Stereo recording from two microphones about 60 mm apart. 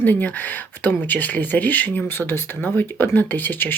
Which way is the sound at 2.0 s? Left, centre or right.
Left.